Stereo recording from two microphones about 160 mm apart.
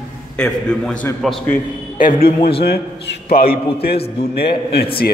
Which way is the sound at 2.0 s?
65° left (ahead or behind).